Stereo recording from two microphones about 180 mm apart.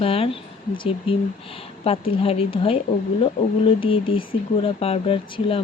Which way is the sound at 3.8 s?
30° left (ahead or behind).